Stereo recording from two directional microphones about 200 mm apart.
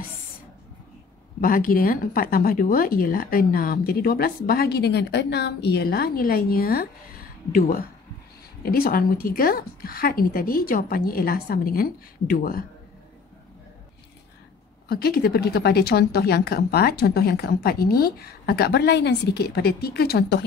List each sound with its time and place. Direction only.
1.4 s speech: 45° left (ahead or behind)
14.9 s speech: 50° left (ahead or behind)